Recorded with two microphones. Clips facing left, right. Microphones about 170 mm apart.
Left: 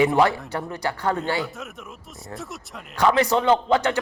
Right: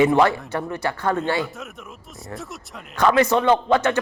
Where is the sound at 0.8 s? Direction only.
15° left (ahead or behind).